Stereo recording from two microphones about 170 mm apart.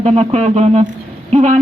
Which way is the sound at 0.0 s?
40° right (ahead or behind).